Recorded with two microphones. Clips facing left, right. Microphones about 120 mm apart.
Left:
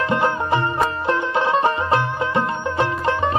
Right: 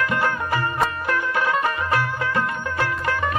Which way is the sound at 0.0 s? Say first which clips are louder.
Left 3 dB; 25° left (ahead or behind).